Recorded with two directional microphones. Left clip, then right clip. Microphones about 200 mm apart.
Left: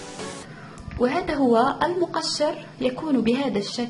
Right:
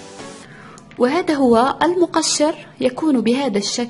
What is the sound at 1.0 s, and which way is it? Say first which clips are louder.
A woman's voice: right 6 dB; 45° right (ahead or behind).